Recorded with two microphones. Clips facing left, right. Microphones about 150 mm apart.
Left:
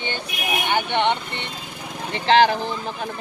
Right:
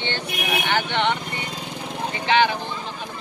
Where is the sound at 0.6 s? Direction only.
15° left (ahead or behind).